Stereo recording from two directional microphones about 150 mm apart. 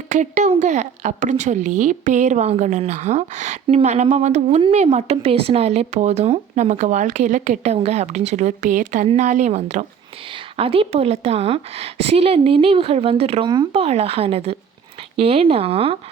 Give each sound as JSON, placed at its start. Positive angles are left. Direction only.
{"t": 0.1, "sound": "a woman's voice", "side_deg": -50}